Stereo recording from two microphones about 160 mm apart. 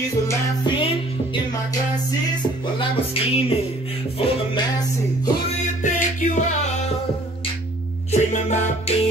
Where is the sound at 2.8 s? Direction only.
35° left (ahead or behind).